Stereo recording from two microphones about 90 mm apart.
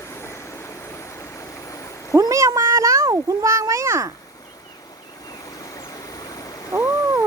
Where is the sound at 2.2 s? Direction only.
35° right (ahead or behind).